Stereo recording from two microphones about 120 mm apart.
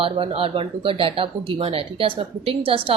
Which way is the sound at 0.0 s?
50° right (ahead or behind).